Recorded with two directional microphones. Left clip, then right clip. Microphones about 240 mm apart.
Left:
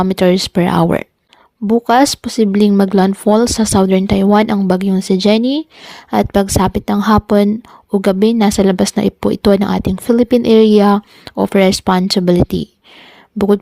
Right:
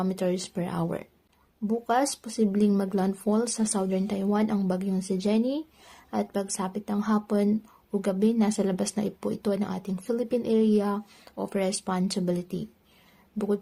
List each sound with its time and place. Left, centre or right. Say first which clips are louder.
0.0 s speech: left 16 dB; left